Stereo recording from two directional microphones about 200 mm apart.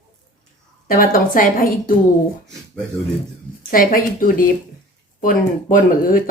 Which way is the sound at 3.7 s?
45° left (ahead or behind).